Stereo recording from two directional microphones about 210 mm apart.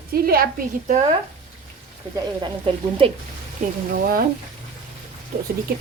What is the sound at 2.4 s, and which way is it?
Speech, 25° right (ahead or behind).